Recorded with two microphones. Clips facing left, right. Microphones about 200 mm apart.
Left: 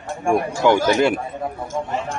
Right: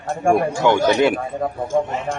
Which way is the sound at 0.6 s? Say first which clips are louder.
Left 2 dB; 10° left (ahead or behind).